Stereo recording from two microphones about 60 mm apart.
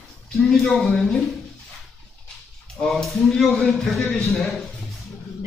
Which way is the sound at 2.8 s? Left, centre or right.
Centre.